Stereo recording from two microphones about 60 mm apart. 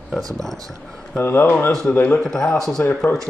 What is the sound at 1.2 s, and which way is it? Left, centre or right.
A man's voice, left.